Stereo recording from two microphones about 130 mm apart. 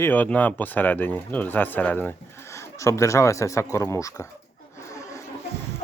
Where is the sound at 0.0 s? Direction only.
15° left (ahead or behind).